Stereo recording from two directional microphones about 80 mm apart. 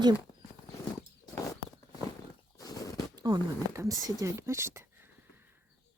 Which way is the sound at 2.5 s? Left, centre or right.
Left.